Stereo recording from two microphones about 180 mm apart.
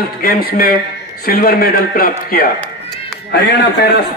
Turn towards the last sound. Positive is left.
turn(degrees=65)  # may be behind; listen again after turning